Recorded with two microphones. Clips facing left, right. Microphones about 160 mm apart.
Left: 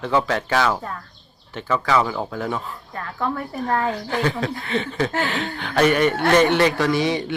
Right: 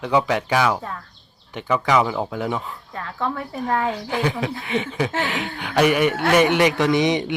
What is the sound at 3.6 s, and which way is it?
Speech, 10° right (ahead or behind).